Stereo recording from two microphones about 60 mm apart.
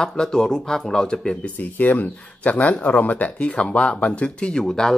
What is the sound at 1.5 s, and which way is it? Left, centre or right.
Speech, left.